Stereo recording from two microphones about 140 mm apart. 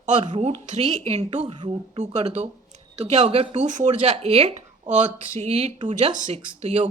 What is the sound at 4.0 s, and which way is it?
Speech, 50° right (ahead or behind).